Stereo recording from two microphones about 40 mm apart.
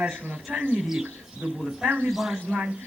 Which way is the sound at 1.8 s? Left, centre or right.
Right.